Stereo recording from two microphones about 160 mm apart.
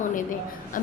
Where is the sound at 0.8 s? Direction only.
60° left (ahead or behind).